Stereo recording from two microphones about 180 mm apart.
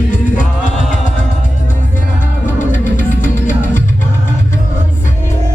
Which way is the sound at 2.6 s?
45° left (ahead or behind).